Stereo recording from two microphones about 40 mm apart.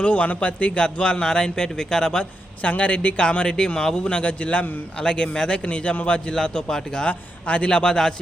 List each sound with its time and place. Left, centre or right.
0.0 s a man's voice: left; by 2.2 s centre
2.6 s a man's voice: left; by 7.0 s centre
7.0 s a man's voice: left